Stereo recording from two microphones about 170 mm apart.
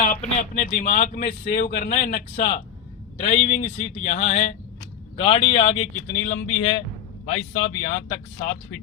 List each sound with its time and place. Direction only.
0.0 s speech: 45° left (ahead or behind)
3.2 s speech: 35° left (ahead or behind)
7.9 s speech: 40° left (ahead or behind)